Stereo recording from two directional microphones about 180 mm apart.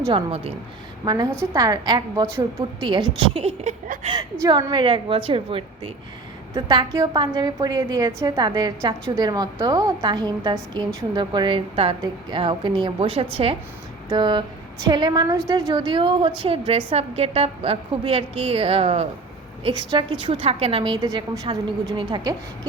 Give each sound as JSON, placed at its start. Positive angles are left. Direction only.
{"t": 0.1, "sound": "a woman's voice", "side_deg": -30}
{"t": 1.0, "sound": "a woman's voice", "side_deg": -20}
{"t": 4.1, "sound": "a woman's voice", "side_deg": -25}